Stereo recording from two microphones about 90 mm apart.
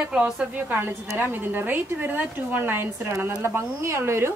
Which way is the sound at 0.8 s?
25° right (ahead or behind).